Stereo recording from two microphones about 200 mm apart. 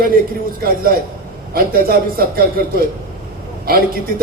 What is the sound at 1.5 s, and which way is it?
Speech, 50° right (ahead or behind).